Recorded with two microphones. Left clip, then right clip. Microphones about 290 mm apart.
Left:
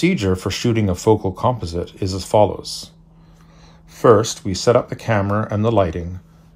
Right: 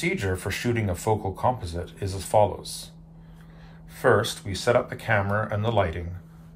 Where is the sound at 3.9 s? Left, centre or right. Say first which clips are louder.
Left 8 dB; left.